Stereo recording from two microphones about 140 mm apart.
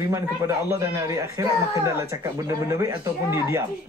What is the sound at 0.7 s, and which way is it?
Speech, 20° right (ahead or behind).